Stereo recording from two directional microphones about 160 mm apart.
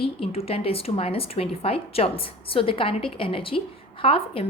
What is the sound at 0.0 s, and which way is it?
Speech, 35° left (ahead or behind).